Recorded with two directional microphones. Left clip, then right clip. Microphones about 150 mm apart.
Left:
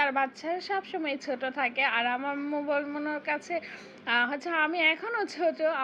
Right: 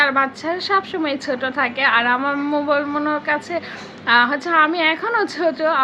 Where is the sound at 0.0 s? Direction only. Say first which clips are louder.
Right 10 dB; 25° left (ahead or behind).